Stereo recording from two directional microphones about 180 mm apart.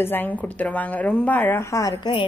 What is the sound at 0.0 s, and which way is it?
Speech, 10° left (ahead or behind).